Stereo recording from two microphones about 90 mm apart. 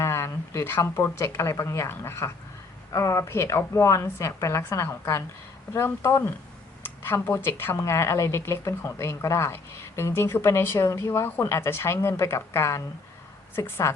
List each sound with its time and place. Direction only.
0.0 s a woman's voice: 30° left (ahead or behind)